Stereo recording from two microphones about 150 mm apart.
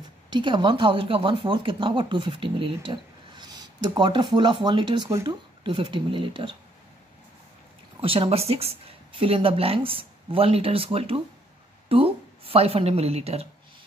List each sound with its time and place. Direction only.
0.3 s speech: 30° right (ahead or behind)
8.0 s speech: 35° right (ahead or behind)